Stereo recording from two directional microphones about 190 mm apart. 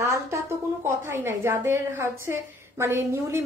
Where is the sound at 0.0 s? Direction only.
15° right (ahead or behind).